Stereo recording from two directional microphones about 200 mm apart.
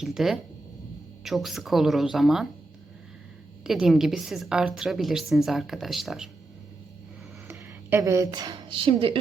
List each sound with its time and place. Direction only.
0.0 s a woman's voice: centre (ahead or behind)
3.6 s a woman's voice: centre (ahead or behind)
7.4 s speech: 10° right (ahead or behind); by 9.1 s 25° right (ahead or behind)